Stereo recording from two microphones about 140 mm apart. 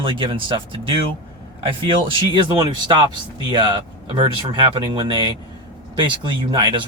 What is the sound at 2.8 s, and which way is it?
Speech, 35° right (ahead or behind).